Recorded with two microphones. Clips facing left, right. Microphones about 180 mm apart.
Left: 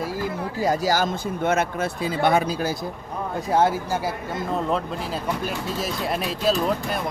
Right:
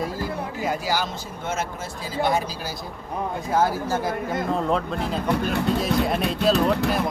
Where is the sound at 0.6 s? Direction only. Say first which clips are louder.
Left 5 dB; 40° left (ahead or behind).